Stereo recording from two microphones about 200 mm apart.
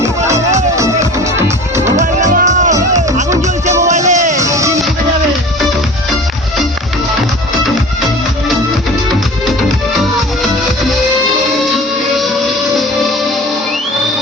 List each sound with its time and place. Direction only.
0.0 s music: 15° right (ahead or behind)
2.0 s music: 35° right (ahead or behind)
3.8 s music: 35° right (ahead or behind)
4.4 s music: 15° right (ahead or behind)